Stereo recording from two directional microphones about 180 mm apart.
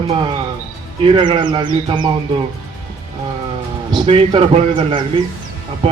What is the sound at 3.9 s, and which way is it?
Speech, 25° right (ahead or behind).